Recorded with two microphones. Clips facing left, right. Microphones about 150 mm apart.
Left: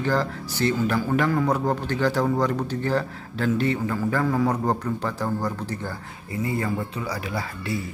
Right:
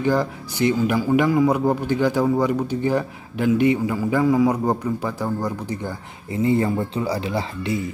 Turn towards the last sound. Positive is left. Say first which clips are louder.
# right 5 dB
turn(degrees=-20)  # may be behind; listen again after turning